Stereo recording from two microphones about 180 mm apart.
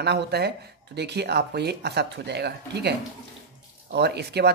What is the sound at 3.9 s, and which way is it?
Speech, 65° right (ahead or behind).